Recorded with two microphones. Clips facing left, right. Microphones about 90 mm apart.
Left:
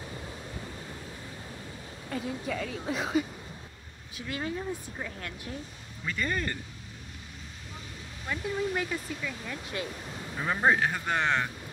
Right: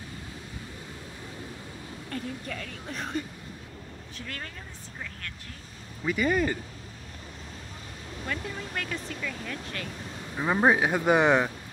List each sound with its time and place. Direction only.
2.0 s a woman's voice: 5° left (ahead or behind)
4.3 s speech: 15° left (ahead or behind)
6.0 s speech: 5° right (ahead or behind)
8.3 s speech: 10° left (ahead or behind)
10.3 s speech: 15° right (ahead or behind)